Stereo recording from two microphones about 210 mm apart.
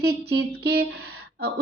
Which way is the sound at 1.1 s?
50° right (ahead or behind).